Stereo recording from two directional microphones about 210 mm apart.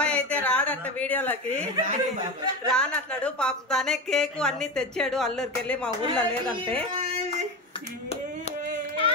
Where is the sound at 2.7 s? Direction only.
5° left (ahead or behind).